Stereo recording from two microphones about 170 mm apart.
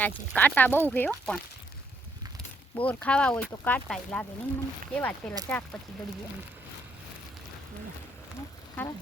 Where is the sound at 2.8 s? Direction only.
10° left (ahead or behind).